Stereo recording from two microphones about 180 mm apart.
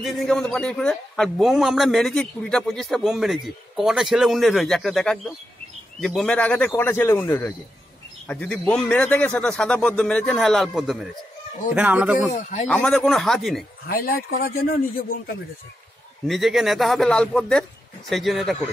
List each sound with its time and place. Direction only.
0.0 s a man's voice: centre (ahead or behind)
12.3 s a man's voice: 40° left (ahead or behind)
12.6 s a man's voice: 5° left (ahead or behind)
13.8 s speech: 55° left (ahead or behind)
16.3 s a man's voice: centre (ahead or behind)